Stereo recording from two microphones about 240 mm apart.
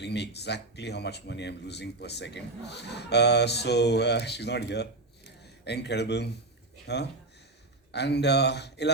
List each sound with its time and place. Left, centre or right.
0.0 s speech: left